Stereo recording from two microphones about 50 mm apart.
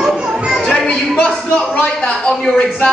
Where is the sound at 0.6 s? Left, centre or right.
Centre.